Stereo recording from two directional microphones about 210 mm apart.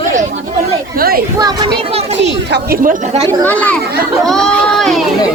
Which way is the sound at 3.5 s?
5° left (ahead or behind).